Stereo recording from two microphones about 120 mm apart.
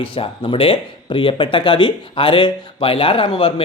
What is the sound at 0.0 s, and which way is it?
Speech, 45° left (ahead or behind).